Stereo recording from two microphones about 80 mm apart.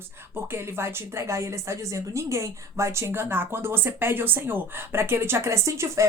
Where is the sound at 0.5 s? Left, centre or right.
Right.